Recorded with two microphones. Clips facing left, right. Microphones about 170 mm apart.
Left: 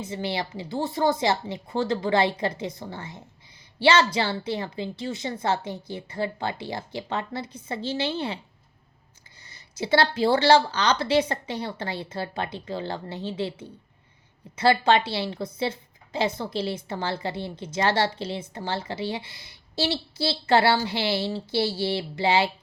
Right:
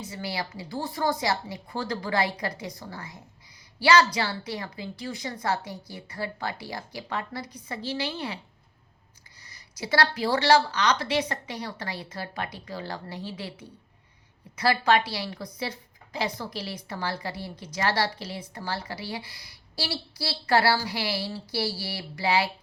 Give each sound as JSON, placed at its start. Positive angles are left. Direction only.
{"t": 0.1, "sound": "a woman's voice", "side_deg": 25}
{"t": 9.4, "sound": "a woman's voice", "side_deg": 25}